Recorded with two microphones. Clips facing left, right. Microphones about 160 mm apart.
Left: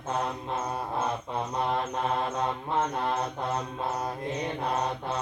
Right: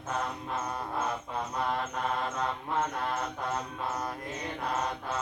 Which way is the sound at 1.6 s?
25° left (ahead or behind).